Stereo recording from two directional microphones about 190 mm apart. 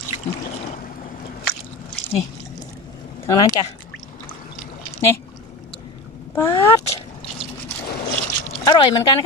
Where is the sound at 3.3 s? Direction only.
20° left (ahead or behind).